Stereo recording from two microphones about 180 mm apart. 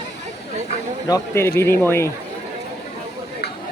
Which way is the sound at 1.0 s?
15° left (ahead or behind).